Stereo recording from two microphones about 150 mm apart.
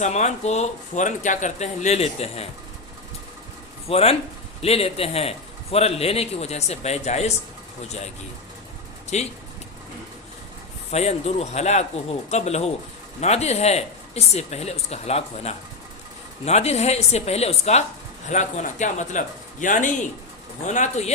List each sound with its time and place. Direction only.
0.0 s speech: 50° left (ahead or behind)
3.8 s a man's voice: 40° left (ahead or behind)
9.1 s speech: 50° left (ahead or behind)
10.9 s speech: 45° left (ahead or behind)